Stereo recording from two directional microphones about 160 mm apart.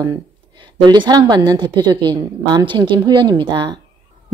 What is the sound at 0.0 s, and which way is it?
A woman's voice, 25° right (ahead or behind).